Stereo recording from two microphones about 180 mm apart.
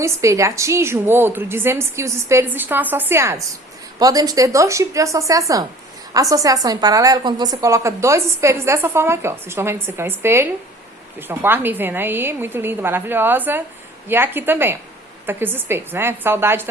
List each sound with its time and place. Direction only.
0.0 s a woman's voice: 15° right (ahead or behind)